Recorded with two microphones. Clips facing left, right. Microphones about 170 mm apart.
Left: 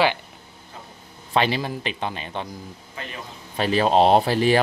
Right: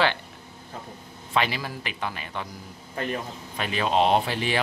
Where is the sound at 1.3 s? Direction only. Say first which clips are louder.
Left 4 dB; 30° left (ahead or behind).